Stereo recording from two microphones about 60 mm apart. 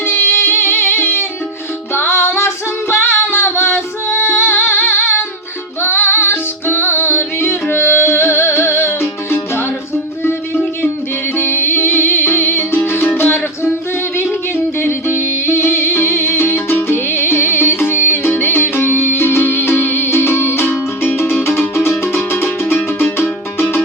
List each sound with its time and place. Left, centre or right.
0.0 s music: left